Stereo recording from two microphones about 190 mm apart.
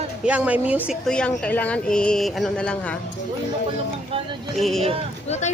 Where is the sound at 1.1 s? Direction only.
5° left (ahead or behind).